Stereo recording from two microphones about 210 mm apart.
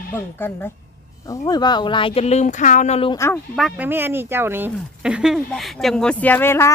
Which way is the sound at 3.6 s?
5° right (ahead or behind).